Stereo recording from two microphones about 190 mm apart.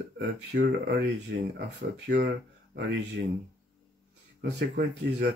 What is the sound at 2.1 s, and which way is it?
Speech, 65° right (ahead or behind).